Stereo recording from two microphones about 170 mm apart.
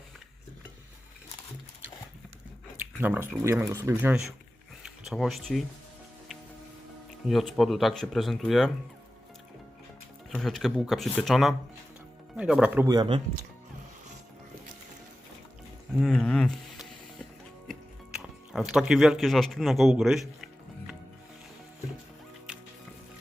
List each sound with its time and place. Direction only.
2.7 s speech: 10° right (ahead or behind)
5.0 s speech: centre (ahead or behind)
7.3 s speech: centre (ahead or behind)
10.3 s speech: centre (ahead or behind)
12.9 s speech: 25° right (ahead or behind)
16.0 s a sound: 5° left (ahead or behind)
18.2 s speech: 5° right (ahead or behind)
22.5 s music: 5° right (ahead or behind)